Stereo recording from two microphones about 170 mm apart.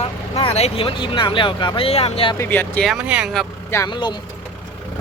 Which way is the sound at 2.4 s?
10° left (ahead or behind).